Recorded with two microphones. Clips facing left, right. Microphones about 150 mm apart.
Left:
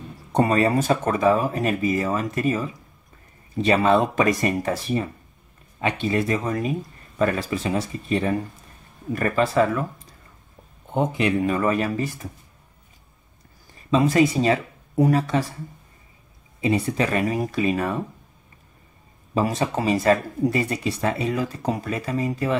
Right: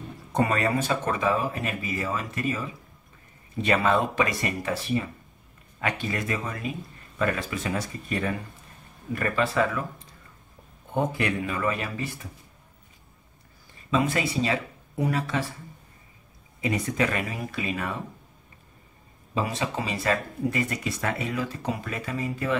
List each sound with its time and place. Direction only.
0.3 s speech: 30° left (ahead or behind)
0.7 s speech: 45° left (ahead or behind)
3.6 s speech: 30° left (ahead or behind)
4.1 s speech: 40° left (ahead or behind)
5.8 s speech: 25° left (ahead or behind)
10.9 s speech: 20° left (ahead or behind)
11.4 s speech: 40° left (ahead or behind)
13.8 s speech: 35° left (ahead or behind)
16.6 s speech: 30° left (ahead or behind)
19.3 s speech: 45° left (ahead or behind)